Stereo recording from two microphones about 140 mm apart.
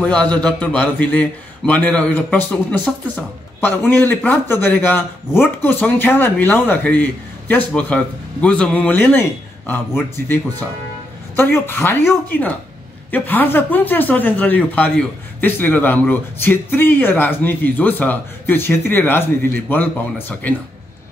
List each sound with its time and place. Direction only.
0.0 s speech: 10° left (ahead or behind)